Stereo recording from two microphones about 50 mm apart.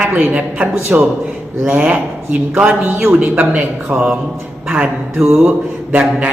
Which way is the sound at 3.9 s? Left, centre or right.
Centre.